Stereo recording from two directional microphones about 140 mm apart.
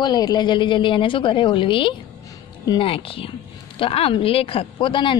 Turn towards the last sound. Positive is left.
turn(degrees=35)  # may be behind; listen again after turning